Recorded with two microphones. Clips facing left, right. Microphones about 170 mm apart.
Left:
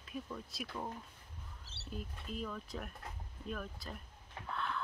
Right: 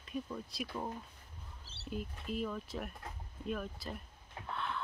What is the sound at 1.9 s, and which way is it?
Speech, 5° right (ahead or behind).